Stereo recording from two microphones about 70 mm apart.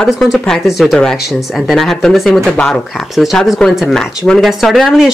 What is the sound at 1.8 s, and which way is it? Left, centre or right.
Speech, centre.